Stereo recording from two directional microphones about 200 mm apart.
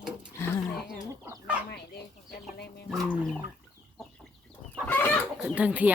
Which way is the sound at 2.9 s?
Centre (ahead or behind).